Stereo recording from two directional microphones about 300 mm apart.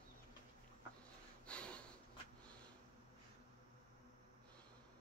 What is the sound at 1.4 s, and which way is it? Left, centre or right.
Snort, centre.